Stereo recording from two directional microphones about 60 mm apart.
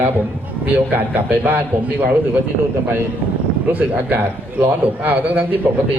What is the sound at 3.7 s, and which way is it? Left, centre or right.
A man's voice, right.